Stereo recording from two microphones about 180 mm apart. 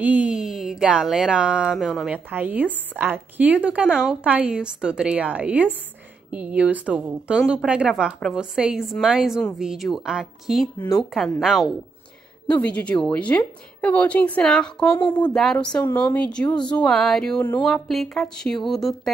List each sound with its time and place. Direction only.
0.0 s a woman's voice: 10° right (ahead or behind)
14.9 s speech: 25° left (ahead or behind)
15.3 s speech: 5° left (ahead or behind)